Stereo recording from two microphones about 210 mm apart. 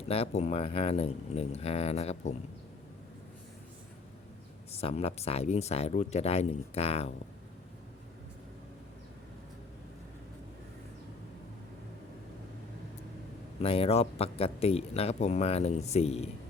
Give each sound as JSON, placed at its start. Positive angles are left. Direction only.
{"t": 0.1, "sound": "speech", "side_deg": 30}
{"t": 4.7, "sound": "speech", "side_deg": 30}
{"t": 13.6, "sound": "speech", "side_deg": 25}